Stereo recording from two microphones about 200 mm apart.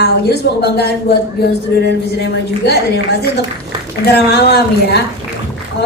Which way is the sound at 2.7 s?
55° left (ahead or behind).